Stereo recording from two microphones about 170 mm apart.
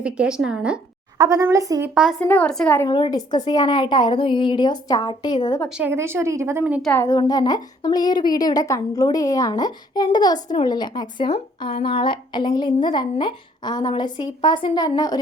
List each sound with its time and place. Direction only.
0.0 s a woman's voice: 5° right (ahead or behind)
1.2 s a woman's voice: 20° right (ahead or behind)
2.0 s a woman's voice: centre (ahead or behind)
2.2 s a woman's voice: 10° left (ahead or behind)
2.8 s a woman's voice: 25° left (ahead or behind)
5.6 s a woman's voice: 5° right (ahead or behind)
6.8 s a woman's voice: 15° left (ahead or behind)